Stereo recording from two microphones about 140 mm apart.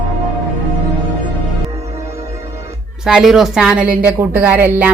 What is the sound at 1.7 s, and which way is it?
Music, 20° right (ahead or behind).